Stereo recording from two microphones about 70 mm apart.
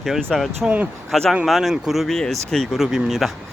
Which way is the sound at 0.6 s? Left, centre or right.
Right.